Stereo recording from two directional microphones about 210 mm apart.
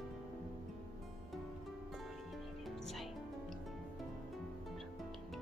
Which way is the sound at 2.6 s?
Centre (ahead or behind).